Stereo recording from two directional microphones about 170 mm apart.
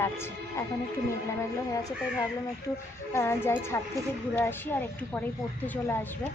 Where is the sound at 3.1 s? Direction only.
15° left (ahead or behind).